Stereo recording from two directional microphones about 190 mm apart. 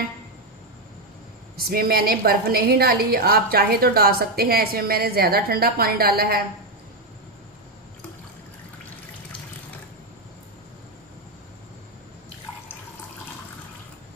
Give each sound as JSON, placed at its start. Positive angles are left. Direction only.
{"t": 1.6, "sound": "a woman's voice", "side_deg": -55}